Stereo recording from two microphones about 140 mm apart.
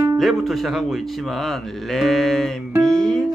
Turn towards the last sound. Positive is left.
turn(degrees=5)  # may be behind; listen again after turning